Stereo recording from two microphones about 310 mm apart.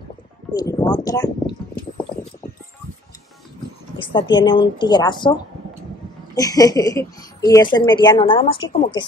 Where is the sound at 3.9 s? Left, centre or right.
Centre.